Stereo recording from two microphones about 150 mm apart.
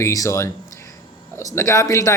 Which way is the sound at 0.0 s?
20° left (ahead or behind).